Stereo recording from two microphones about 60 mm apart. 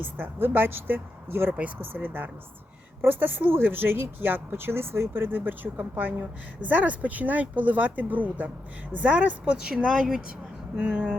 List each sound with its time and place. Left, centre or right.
0.0 s speech: right; by 9.7 s centre
9.8 s speech: centre
10.8 s speech: right